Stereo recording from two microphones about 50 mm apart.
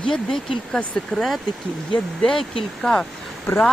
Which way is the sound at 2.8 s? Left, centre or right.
Centre.